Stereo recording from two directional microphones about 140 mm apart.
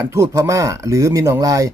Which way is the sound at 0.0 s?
20° right (ahead or behind).